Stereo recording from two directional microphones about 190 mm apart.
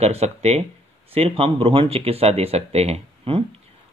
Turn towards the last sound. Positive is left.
turn(degrees=-30)  # may be behind; listen again after turning